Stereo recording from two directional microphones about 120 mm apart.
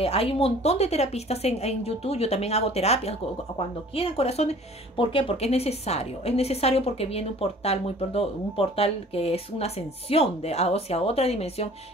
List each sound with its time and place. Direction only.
0.0 s a woman's voice: 55° left (ahead or behind)